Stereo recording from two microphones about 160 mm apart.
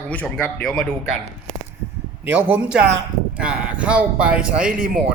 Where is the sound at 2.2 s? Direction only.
10° right (ahead or behind).